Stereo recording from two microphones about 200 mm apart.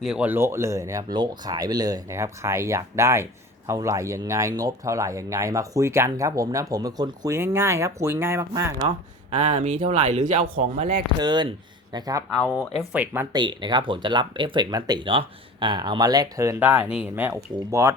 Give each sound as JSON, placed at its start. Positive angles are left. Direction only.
{"t": 0.0, "sound": "speech", "side_deg": -5}
{"t": 9.4, "sound": "speech", "side_deg": -35}
{"t": 11.2, "sound": "speech", "side_deg": -20}
{"t": 12.4, "sound": "speech", "side_deg": 5}
{"t": 12.9, "sound": "speech", "side_deg": -5}
{"t": 13.3, "sound": "speech", "side_deg": -20}